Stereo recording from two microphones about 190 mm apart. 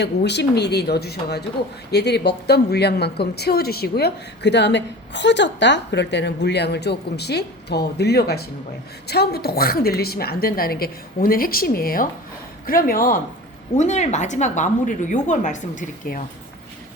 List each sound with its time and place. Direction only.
0.0 s a woman's voice: 65° left (ahead or behind)
13.7 s a woman's voice: 40° left (ahead or behind)